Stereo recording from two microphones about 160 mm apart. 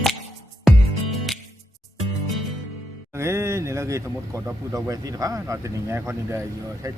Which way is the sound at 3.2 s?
15° right (ahead or behind).